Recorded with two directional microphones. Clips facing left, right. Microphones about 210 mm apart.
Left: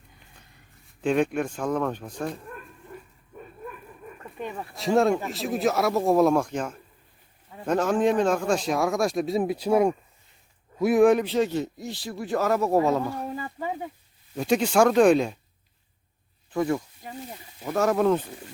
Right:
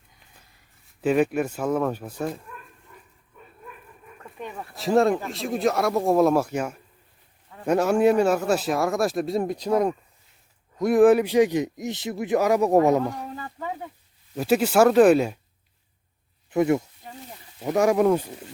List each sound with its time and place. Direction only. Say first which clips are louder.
1.0 s a man's voice: right 2 dB; 5° right (ahead or behind)
4.2 s a man's voice: left 2 dB; centre (ahead or behind); by 13.2 s 15° right (ahead or behind)
13.3 s speech: left 2 dB; 10° left (ahead or behind)
14.3 s speech: right 2 dB; 5° right (ahead or behind)
16.5 s a man's voice: right 4 dB; 20° right (ahead or behind)